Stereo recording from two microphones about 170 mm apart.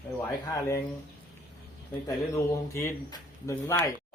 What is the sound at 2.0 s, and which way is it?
Speech, 15° left (ahead or behind).